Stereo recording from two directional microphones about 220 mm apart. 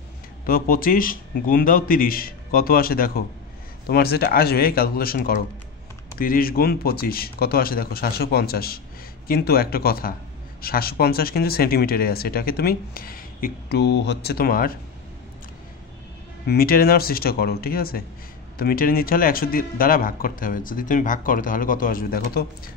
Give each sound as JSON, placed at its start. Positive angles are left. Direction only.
{"t": 0.5, "sound": "speech", "side_deg": 40}
{"t": 16.4, "sound": "speech", "side_deg": 45}